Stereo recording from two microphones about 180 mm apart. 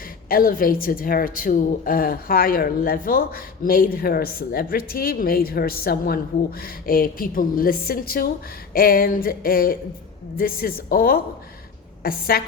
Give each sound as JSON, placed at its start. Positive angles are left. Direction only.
{"t": 0.3, "sound": "a woman's voice", "side_deg": 50}